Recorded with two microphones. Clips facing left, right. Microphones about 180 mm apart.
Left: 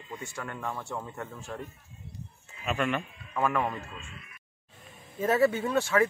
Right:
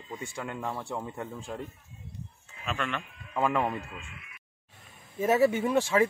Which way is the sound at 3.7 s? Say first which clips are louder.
Right 2 dB; 15° right (ahead or behind).